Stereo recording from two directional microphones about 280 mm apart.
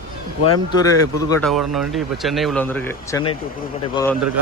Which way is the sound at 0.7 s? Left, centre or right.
Centre.